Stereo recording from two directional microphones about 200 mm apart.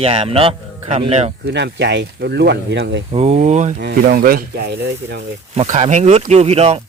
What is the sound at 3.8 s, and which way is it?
Speech, 45° right (ahead or behind).